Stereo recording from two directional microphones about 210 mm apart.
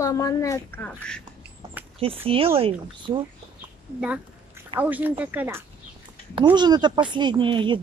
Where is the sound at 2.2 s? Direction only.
25° right (ahead or behind).